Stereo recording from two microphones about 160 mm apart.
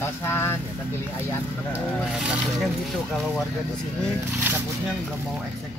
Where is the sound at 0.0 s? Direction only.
15° left (ahead or behind).